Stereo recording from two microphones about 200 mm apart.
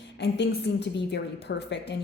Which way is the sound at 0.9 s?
55° left (ahead or behind).